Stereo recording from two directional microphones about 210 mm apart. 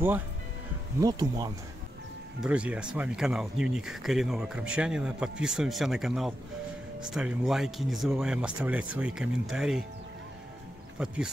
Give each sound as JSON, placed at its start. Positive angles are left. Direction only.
{"t": 1.0, "sound": "speech", "side_deg": -15}
{"t": 2.4, "sound": "speech", "side_deg": -5}
{"t": 11.0, "sound": "speech", "side_deg": -5}